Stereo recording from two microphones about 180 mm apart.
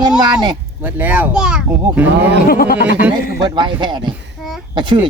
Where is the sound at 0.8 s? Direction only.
10° right (ahead or behind).